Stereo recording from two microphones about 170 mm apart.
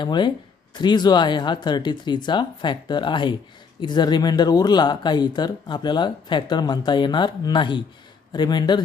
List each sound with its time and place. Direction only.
0.0 s speech: 25° left (ahead or behind)